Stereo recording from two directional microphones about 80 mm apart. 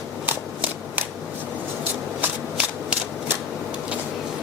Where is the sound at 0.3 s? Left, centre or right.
Right.